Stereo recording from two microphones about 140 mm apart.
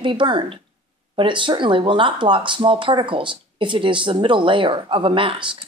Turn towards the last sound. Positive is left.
turn(degrees=-40)  # may be behind; listen again after turning